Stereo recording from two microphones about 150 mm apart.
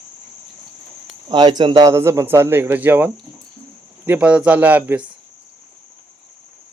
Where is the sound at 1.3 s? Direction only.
30° right (ahead or behind); by 5.0 s 10° right (ahead or behind).